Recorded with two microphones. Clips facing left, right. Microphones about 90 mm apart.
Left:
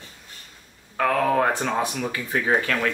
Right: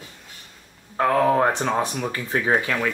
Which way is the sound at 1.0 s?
25° right (ahead or behind).